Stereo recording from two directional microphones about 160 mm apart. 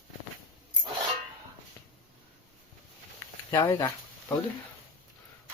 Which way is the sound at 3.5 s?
20° left (ahead or behind).